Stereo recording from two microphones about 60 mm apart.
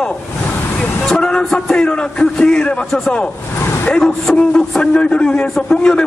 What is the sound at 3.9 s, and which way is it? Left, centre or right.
A man's voice, centre.